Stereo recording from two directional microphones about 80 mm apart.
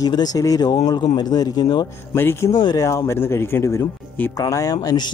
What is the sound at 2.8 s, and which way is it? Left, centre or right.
Speech, left.